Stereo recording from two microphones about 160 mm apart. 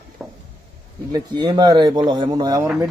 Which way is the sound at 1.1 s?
25° right (ahead or behind).